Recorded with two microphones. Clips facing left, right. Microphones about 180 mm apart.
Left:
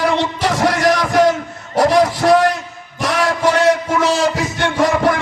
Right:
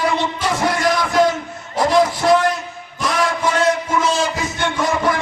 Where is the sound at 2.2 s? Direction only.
55° left (ahead or behind).